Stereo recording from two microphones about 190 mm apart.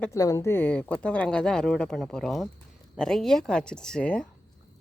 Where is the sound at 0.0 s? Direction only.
15° left (ahead or behind).